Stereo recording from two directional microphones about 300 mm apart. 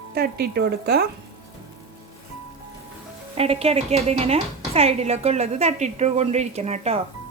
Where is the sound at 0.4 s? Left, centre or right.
Right.